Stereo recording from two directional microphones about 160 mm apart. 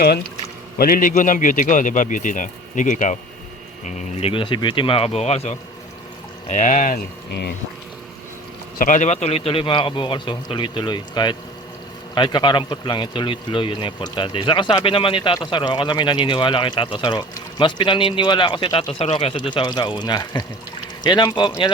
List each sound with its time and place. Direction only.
0.8 s a man's voice: 65° left (ahead or behind)
3.8 s a man's voice: 35° left (ahead or behind); by 7.0 s 55° left (ahead or behind)
8.8 s a man's voice: 50° left (ahead or behind); by 21.7 s 30° left (ahead or behind)